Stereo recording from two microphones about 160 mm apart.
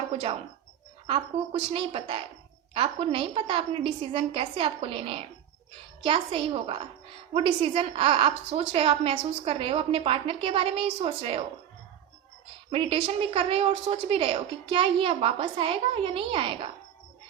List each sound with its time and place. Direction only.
0.1 s a woman's voice: 35° right (ahead or behind)
12.7 s a woman's voice: 35° right (ahead or behind)